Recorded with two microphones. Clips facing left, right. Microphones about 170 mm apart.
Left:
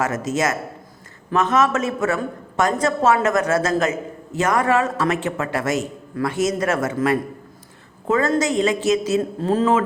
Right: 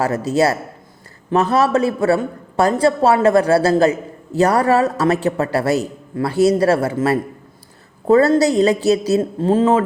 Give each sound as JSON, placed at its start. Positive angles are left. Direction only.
{"t": 0.0, "sound": "a woman's voice", "side_deg": -35}